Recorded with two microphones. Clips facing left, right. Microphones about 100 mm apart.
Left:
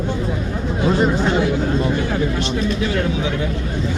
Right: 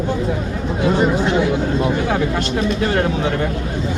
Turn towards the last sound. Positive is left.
turn(degrees=-55)  # may be behind; listen again after turning